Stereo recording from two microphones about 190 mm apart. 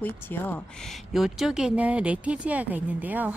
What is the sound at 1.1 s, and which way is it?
Speech, centre (ahead or behind).